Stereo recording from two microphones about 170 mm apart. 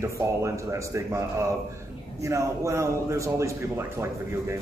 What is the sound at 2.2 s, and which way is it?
A man's voice, 20° right (ahead or behind).